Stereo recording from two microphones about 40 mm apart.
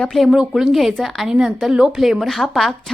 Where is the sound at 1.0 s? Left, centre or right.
Centre.